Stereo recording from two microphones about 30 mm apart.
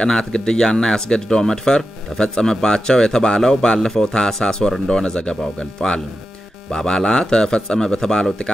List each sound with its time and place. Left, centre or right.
0.0 s speech: left